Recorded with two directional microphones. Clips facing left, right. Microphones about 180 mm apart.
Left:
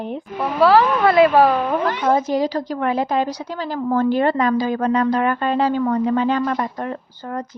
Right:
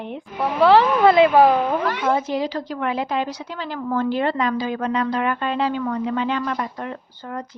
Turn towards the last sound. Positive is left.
turn(degrees=40)  # may be behind; listen again after turning